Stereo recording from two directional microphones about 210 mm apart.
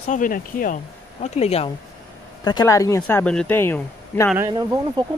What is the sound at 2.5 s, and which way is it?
Speech, 15° left (ahead or behind).